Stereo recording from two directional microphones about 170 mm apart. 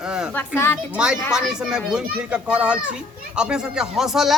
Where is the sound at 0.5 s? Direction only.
10° left (ahead or behind).